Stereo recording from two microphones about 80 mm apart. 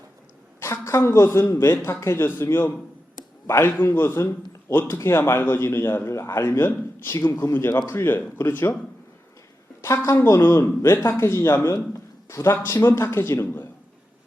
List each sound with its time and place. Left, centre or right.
0.6 s a man's voice: left
9.8 s a man's voice: left